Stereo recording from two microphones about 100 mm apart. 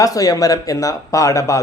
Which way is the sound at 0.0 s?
35° left (ahead or behind).